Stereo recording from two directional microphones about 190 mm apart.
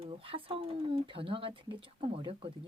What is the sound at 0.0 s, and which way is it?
Speech, 30° right (ahead or behind).